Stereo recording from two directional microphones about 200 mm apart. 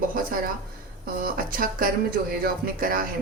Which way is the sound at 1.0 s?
45° right (ahead or behind).